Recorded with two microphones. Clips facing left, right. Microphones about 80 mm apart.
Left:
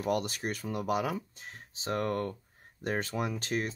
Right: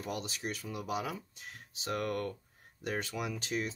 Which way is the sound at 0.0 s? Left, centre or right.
Left.